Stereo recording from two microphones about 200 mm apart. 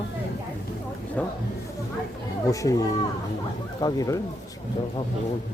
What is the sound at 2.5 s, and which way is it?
Speech, 15° left (ahead or behind).